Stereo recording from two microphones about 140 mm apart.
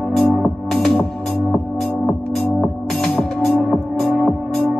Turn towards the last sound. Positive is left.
turn(degrees=5)  # may be behind; listen again after turning